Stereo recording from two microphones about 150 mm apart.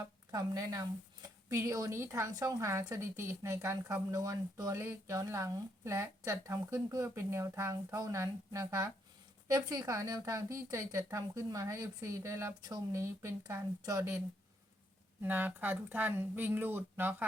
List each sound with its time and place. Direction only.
0.0 s a woman's voice: 25° right (ahead or behind)
15.2 s speech: 15° right (ahead or behind)